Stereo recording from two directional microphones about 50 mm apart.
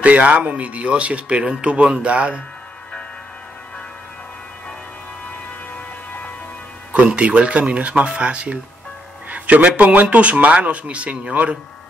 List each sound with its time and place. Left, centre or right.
0.0 s speech: right
6.9 s speech: right
9.3 s a sound: right
9.8 s speech: right